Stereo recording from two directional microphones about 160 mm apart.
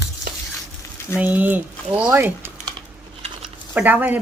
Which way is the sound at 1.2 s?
10° right (ahead or behind).